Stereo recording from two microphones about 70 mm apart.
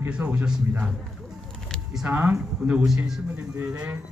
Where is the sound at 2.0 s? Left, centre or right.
Right.